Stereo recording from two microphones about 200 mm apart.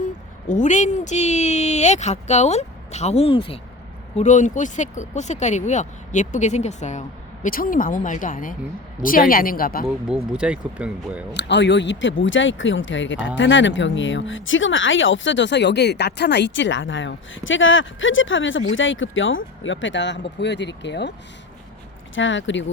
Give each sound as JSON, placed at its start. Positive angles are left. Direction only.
{"t": 0.0, "sound": "a woman's voice", "side_deg": 40}
{"t": 4.2, "sound": "a woman's voice", "side_deg": 40}
{"t": 9.8, "sound": "speech", "side_deg": -5}
{"t": 11.3, "sound": "speech", "side_deg": 60}
{"t": 22.1, "sound": "speech", "side_deg": 70}